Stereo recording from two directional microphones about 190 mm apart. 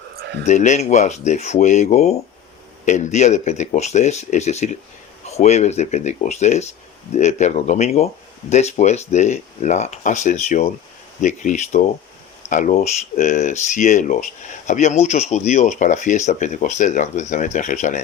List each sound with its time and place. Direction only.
0.4 s speech: 40° left (ahead or behind)